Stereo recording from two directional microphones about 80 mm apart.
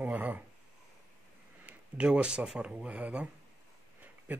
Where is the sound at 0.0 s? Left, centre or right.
Right.